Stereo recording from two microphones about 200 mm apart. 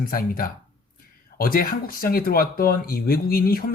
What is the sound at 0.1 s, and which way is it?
Speech, 45° left (ahead or behind).